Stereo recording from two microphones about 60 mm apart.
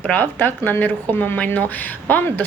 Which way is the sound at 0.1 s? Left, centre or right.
Left.